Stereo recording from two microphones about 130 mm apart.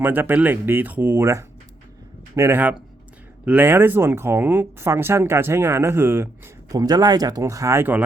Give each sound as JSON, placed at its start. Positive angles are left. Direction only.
{"t": 0.0, "sound": "speech", "side_deg": -15}